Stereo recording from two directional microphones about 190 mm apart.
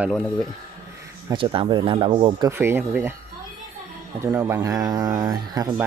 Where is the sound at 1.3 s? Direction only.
25° right (ahead or behind).